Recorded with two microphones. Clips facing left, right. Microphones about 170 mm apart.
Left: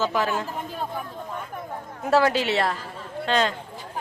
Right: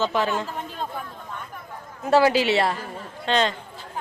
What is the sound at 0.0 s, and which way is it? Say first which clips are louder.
Speech: right 1 dB; 5° left (ahead or behind).